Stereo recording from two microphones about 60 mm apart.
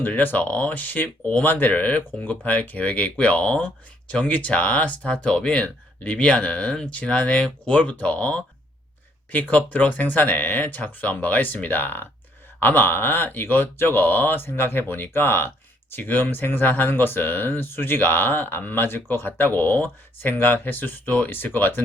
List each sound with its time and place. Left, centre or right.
0.0 s speech: left